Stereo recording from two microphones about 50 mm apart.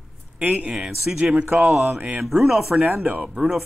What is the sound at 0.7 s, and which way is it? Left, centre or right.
Speech, centre.